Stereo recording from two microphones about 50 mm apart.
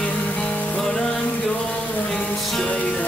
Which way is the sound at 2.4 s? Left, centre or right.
Centre.